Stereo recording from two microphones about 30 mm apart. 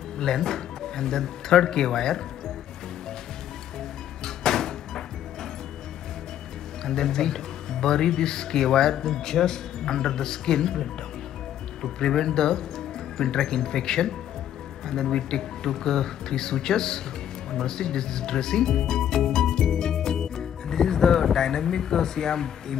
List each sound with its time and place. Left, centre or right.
0.2 s speech: centre
4.2 s music: centre
6.8 s speech: centre